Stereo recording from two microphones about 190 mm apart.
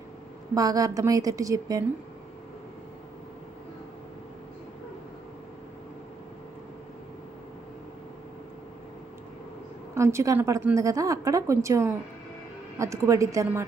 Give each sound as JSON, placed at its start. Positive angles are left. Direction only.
{"t": 0.5, "sound": "a woman's voice", "side_deg": -20}
{"t": 9.9, "sound": "a woman's voice", "side_deg": -15}